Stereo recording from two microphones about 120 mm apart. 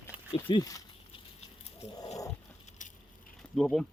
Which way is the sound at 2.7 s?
90° left.